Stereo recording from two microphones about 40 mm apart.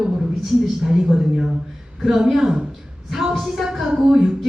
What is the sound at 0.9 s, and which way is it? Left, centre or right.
A woman's voice, centre.